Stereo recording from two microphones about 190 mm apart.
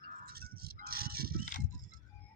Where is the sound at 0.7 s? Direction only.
55° right (ahead or behind).